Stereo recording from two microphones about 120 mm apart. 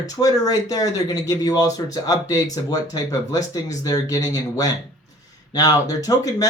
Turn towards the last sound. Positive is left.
turn(degrees=30)  # may be behind; listen again after turning